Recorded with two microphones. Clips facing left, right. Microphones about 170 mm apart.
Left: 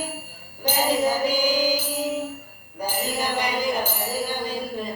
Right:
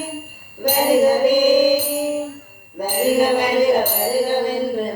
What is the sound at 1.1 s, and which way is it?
Music, 55° right (ahead or behind).